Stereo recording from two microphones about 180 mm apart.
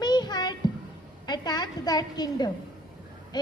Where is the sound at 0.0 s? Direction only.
25° left (ahead or behind).